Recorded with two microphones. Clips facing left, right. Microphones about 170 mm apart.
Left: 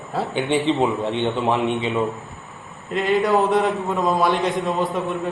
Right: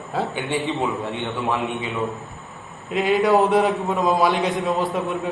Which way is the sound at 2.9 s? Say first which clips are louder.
Right 1 dB; centre (ahead or behind).